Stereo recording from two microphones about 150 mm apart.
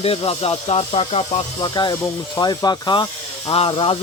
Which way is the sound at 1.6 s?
30° left (ahead or behind).